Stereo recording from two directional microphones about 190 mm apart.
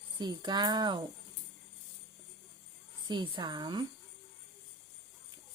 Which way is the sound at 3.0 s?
25° right (ahead or behind).